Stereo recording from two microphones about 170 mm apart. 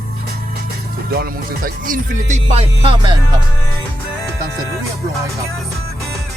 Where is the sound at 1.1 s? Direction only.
65° right (ahead or behind); by 3.2 s 30° right (ahead or behind).